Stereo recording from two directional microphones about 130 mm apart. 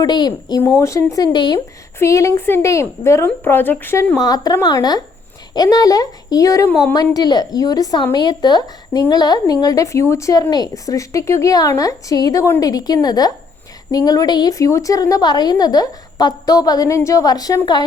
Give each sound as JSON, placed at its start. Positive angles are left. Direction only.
{"t": 0.0, "sound": "speech", "side_deg": 30}
{"t": 2.0, "sound": "speech", "side_deg": 25}
{"t": 4.2, "sound": "speech", "side_deg": 30}